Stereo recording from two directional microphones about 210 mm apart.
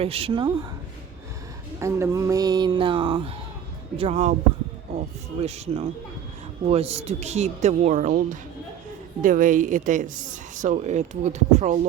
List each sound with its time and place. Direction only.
0.0 s speech: 30° right (ahead or behind)
1.8 s speech: 15° right (ahead or behind); by 4.4 s 30° right (ahead or behind)
5.4 s a woman's voice: 30° right (ahead or behind)
9.2 s a woman's voice: 40° right (ahead or behind)